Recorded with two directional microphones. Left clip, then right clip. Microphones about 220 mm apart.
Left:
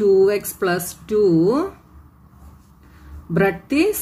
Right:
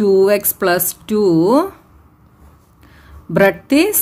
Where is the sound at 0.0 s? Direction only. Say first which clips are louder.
Right 3 dB; 45° right (ahead or behind).